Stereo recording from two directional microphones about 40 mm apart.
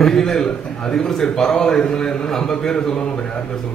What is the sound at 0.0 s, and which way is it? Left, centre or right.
A man's voice, centre.